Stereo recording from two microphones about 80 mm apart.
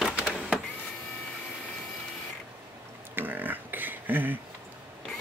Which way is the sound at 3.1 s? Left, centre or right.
Right.